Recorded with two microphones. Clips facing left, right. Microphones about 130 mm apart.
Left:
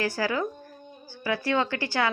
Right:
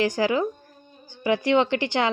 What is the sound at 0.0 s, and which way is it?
A woman's voice, 20° right (ahead or behind).